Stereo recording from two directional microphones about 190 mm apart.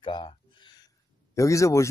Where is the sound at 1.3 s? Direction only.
15° left (ahead or behind).